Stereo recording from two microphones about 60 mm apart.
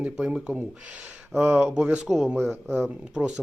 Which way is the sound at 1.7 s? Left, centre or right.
Centre.